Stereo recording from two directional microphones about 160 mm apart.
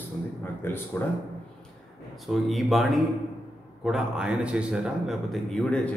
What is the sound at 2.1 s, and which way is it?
A man's voice, centre (ahead or behind).